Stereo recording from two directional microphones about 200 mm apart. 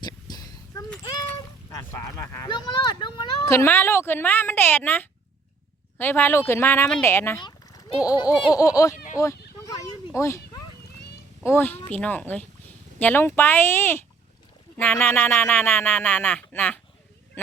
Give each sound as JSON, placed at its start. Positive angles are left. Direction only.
{"t": 0.0, "sound": "a sound", "side_deg": 20}
{"t": 1.7, "sound": "speech", "side_deg": 15}
{"t": 10.2, "sound": "speech", "side_deg": 15}